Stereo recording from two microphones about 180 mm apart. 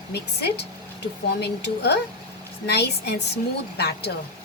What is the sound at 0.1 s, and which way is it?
A woman's voice, 65° left (ahead or behind).